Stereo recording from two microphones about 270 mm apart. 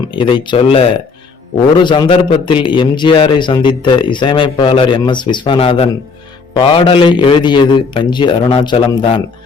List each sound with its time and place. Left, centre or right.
0.1 s a man's voice: centre